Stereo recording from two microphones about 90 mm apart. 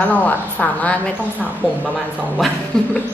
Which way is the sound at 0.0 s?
20° left (ahead or behind).